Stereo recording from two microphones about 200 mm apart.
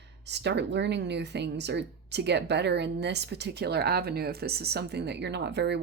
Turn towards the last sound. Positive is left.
turn(degrees=-60)  # may be behind; listen again after turning